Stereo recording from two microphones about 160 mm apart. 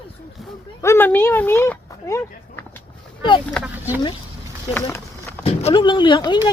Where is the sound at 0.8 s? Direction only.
15° left (ahead or behind).